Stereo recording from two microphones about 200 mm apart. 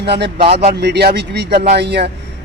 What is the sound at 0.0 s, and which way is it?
Speech, 55° right (ahead or behind).